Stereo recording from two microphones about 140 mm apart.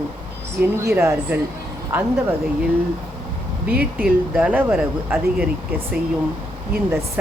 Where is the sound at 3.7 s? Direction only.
90° right.